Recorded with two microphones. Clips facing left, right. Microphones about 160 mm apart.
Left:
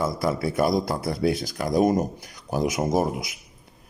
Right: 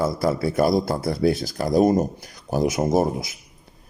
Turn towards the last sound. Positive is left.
turn(degrees=-30)  # may be behind; listen again after turning